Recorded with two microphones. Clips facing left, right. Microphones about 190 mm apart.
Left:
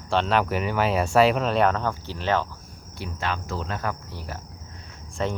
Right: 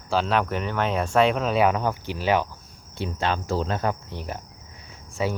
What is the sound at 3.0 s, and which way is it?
Speech, 25° right (ahead or behind).